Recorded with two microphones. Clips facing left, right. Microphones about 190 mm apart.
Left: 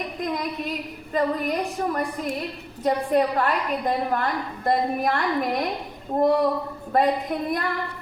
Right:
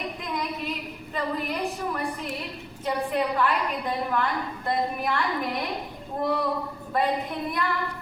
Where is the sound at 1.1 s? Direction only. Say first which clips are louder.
Left 6 dB; 45° left (ahead or behind).